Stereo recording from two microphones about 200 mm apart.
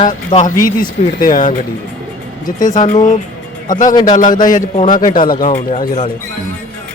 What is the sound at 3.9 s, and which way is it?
Speech, 20° left (ahead or behind).